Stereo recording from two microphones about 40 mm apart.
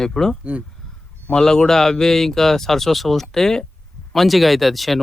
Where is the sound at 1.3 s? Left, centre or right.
Centre.